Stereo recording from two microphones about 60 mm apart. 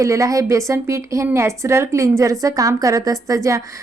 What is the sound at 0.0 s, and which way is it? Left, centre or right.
A woman's voice, right.